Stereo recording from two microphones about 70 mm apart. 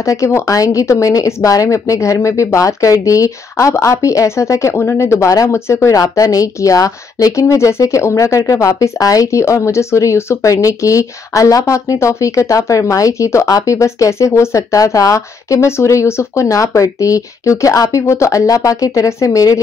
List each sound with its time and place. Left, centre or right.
0.0 s speech: left